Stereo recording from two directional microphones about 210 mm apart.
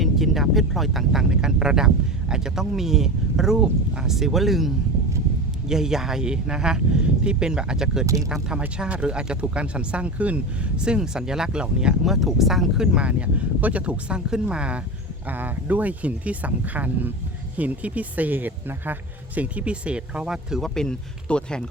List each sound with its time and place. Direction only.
0.0 s speech: centre (ahead or behind)
8.0 s speech: 15° right (ahead or behind)
8.3 s speech: 5° right (ahead or behind)